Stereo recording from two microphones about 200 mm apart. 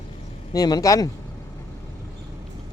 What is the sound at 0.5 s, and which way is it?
Speech, 20° left (ahead or behind).